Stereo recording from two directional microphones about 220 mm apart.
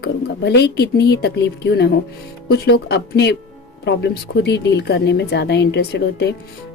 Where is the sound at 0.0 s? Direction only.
50° left (ahead or behind).